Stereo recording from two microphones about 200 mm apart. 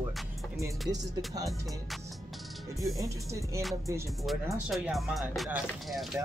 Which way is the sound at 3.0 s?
15° right (ahead or behind).